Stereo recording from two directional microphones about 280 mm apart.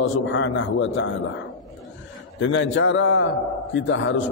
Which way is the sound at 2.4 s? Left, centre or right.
Left.